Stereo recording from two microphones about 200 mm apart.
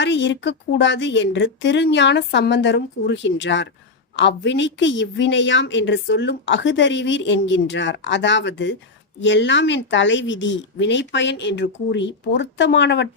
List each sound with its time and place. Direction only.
0.0 s a woman's voice: 60° left (ahead or behind)